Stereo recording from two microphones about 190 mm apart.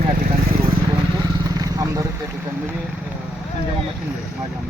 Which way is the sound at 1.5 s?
20° right (ahead or behind).